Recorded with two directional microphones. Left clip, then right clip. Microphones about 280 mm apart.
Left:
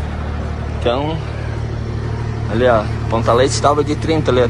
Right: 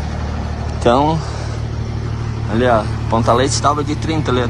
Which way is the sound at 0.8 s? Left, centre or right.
Right.